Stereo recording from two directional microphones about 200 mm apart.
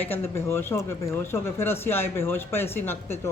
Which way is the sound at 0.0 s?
10° left (ahead or behind).